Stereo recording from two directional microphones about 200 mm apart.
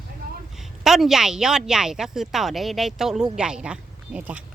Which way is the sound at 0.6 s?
Centre (ahead or behind).